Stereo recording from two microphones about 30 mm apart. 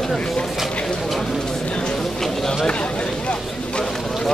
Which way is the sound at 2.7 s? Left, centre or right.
Left.